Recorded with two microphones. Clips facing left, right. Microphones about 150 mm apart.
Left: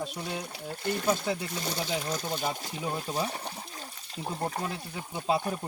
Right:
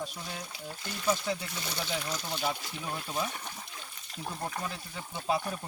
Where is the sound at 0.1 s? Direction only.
65° left (ahead or behind); by 4.7 s 35° left (ahead or behind).